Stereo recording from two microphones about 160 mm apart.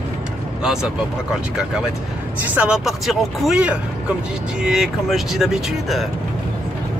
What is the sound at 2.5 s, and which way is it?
Speech, 5° right (ahead or behind).